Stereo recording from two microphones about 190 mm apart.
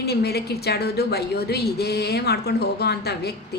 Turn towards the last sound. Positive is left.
turn(degrees=60)  # may be behind; listen again after turning